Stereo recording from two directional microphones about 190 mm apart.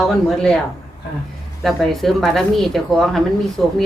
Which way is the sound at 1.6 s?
Centre (ahead or behind).